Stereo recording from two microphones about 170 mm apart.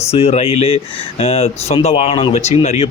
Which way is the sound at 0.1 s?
40° left (ahead or behind).